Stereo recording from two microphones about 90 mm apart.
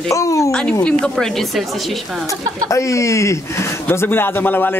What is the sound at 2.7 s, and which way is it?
Speech, 35° left (ahead or behind).